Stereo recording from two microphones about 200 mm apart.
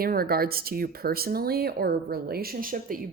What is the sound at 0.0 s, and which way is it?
Speech, 50° right (ahead or behind).